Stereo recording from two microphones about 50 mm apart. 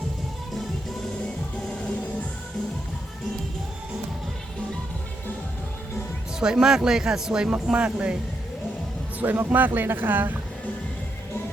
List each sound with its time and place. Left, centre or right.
6.4 s speech: centre
9.1 s speech: right